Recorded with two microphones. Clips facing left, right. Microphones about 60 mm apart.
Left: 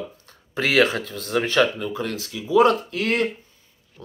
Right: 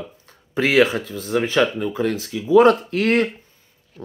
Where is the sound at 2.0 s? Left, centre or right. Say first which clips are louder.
Right 6 dB; right.